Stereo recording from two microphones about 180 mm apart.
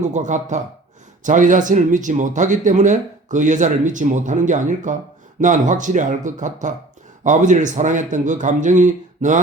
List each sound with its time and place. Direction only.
0.0 s speech: 45° right (ahead or behind)